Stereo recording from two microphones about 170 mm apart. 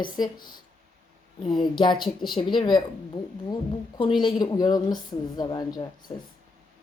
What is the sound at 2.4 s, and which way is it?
A woman's voice, 25° left (ahead or behind).